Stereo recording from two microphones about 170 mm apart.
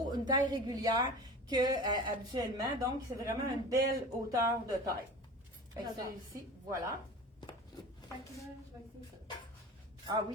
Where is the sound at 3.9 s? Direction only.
20° right (ahead or behind).